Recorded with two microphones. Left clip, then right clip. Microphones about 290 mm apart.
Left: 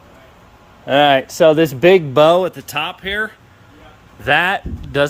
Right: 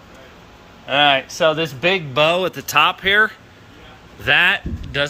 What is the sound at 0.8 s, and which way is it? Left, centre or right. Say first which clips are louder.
Speech: left 3 dB; left.